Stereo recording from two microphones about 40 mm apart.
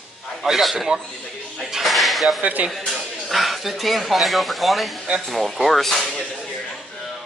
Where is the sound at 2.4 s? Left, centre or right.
Right.